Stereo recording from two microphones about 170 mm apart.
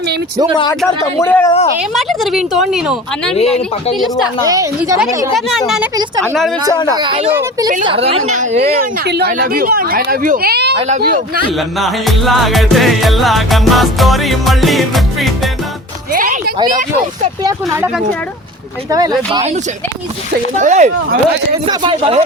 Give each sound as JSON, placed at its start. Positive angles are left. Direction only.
{"t": 1.0, "sound": "speech", "side_deg": 15}
{"t": 2.0, "sound": "music", "side_deg": 0}
{"t": 4.4, "sound": "speech", "side_deg": -20}
{"t": 5.3, "sound": "music", "side_deg": 0}
{"t": 6.9, "sound": "speech", "side_deg": -30}
{"t": 9.0, "sound": "speech", "side_deg": -75}
{"t": 10.8, "sound": "speech", "side_deg": -45}
{"t": 11.8, "sound": "music", "side_deg": 0}
{"t": 16.1, "sound": "a sound", "side_deg": -50}
{"t": 18.9, "sound": "speech", "side_deg": -25}
{"t": 20.6, "sound": "speech", "side_deg": -45}
{"t": 21.7, "sound": "speech", "side_deg": -30}